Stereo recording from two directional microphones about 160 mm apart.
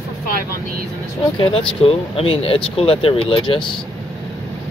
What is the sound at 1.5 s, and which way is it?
Speech, 35° left (ahead or behind).